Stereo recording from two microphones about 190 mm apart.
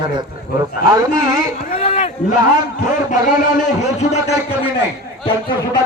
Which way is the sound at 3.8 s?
35° left (ahead or behind).